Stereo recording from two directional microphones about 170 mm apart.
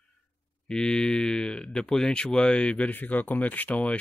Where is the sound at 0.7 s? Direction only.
5° left (ahead or behind).